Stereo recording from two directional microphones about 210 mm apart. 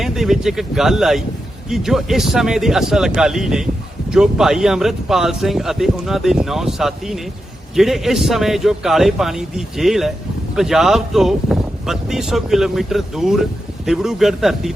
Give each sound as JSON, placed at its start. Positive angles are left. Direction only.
{"t": 0.0, "sound": "speech", "side_deg": 0}